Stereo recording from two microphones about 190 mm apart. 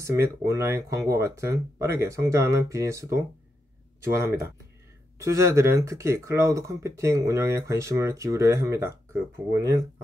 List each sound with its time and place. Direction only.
0.0 s speech: 15° right (ahead or behind)